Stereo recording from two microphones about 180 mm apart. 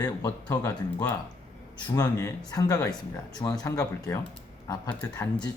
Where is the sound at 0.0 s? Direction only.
20° left (ahead or behind).